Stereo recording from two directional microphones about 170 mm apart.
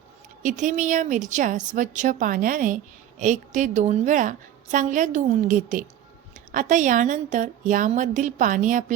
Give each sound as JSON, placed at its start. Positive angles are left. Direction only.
{"t": 0.4, "sound": "a woman's voice", "side_deg": -45}